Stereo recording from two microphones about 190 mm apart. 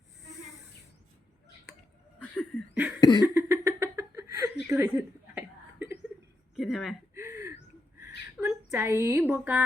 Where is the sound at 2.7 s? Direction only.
10° right (ahead or behind).